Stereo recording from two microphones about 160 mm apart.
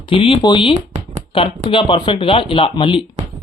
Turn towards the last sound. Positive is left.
turn(degrees=35)  # may be behind; listen again after turning